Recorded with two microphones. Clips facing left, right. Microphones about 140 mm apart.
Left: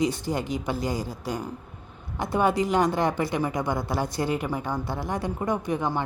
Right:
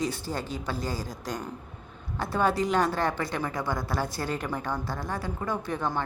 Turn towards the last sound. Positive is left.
turn(degrees=15)  # may be behind; listen again after turning